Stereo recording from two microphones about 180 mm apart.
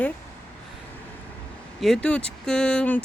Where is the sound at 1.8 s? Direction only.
5° left (ahead or behind).